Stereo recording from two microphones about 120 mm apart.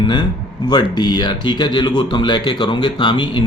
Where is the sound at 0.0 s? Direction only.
40° left (ahead or behind).